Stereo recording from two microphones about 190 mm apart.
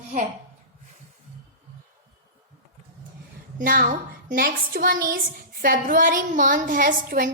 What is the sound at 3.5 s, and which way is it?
A woman's voice, 50° right (ahead or behind).